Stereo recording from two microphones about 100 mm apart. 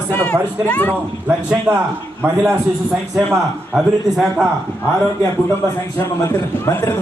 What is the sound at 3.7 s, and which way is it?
Speech, 5° right (ahead or behind).